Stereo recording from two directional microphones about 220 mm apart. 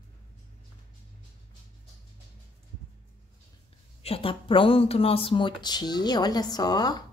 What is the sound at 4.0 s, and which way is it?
Speech, 25° left (ahead or behind).